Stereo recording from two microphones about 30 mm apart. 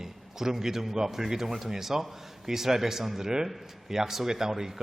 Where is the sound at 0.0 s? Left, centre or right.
Centre.